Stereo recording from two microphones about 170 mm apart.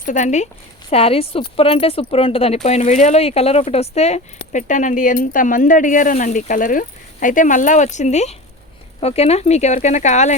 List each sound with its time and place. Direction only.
0.0 s a woman's voice: 45° left (ahead or behind)